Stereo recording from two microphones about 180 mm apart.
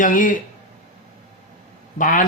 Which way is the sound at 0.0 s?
50° left (ahead or behind).